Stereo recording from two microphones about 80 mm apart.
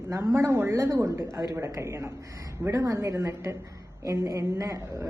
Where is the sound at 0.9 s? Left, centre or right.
Right.